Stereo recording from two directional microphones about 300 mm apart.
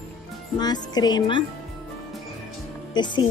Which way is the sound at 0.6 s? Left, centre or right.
Centre.